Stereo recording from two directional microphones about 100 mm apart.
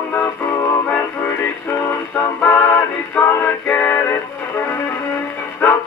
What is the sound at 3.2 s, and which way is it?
Music, 15° left (ahead or behind).